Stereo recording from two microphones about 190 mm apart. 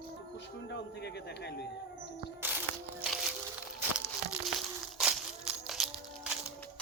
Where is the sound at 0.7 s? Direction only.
65° left (ahead or behind).